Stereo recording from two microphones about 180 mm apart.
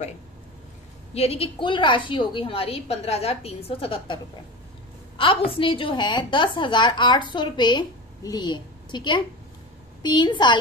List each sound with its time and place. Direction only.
1.1 s a woman's voice: 35° left (ahead or behind)